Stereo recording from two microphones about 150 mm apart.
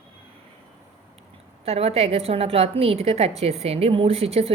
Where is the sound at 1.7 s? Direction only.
45° right (ahead or behind).